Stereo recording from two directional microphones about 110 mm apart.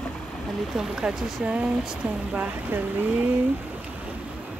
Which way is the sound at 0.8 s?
5° right (ahead or behind).